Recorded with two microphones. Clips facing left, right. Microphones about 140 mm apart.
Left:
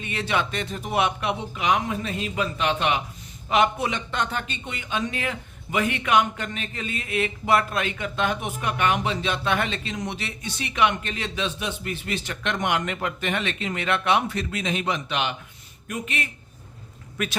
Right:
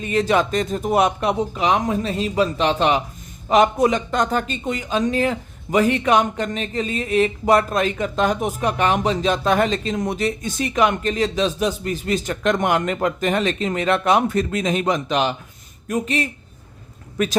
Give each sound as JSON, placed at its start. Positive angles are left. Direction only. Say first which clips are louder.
{"t": 0.0, "sound": "speech", "louder": "right 8 dB", "side_deg": -40}